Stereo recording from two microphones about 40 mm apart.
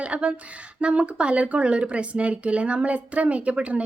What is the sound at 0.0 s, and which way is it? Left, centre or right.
Speech, right.